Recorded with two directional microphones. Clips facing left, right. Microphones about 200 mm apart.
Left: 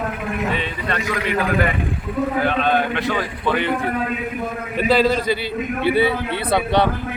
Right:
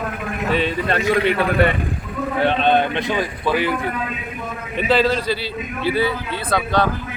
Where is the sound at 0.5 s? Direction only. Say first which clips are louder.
Right 5 dB; 35° right (ahead or behind); by 3.7 s 5° right (ahead or behind).